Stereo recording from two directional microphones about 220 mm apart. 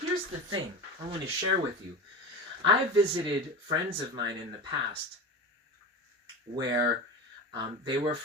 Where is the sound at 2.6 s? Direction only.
20° right (ahead or behind).